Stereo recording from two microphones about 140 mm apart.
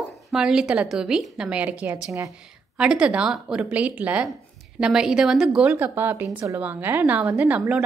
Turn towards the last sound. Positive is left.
turn(degrees=-10)  # may be behind; listen again after turning